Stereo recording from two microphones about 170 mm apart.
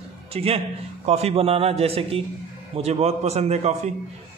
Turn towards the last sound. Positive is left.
turn(degrees=-40)  # may be behind; listen again after turning